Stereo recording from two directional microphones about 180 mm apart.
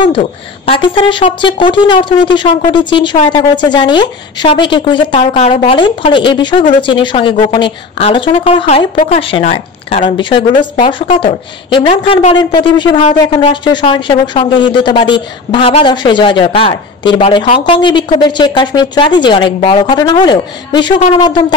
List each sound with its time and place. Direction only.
0.2 s a woman's voice: 30° left (ahead or behind)